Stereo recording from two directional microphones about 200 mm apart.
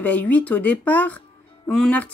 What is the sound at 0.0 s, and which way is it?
Speech, 5° left (ahead or behind).